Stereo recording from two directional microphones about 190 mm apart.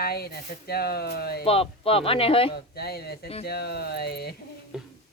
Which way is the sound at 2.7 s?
55° left (ahead or behind).